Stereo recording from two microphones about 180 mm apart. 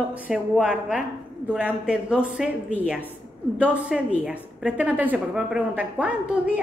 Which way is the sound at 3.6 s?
5° right (ahead or behind).